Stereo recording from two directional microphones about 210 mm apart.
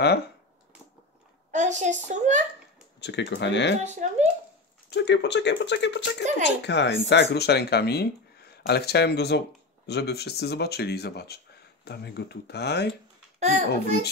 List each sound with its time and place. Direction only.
1.5 s a woman's voice: 35° right (ahead or behind)
3.0 s speech: 55° left (ahead or behind)
3.8 s a woman's voice: 35° right (ahead or behind)
4.9 s speech: 55° left (ahead or behind)
13.4 s a woman's voice: 35° right (ahead or behind)